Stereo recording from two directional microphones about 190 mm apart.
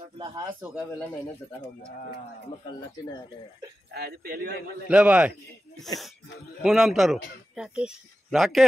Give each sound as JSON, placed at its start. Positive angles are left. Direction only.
{"t": 0.2, "sound": "a man's voice", "side_deg": -20}
{"t": 3.9, "sound": "a man's voice", "side_deg": -55}
{"t": 4.8, "sound": "a man's voice", "side_deg": -5}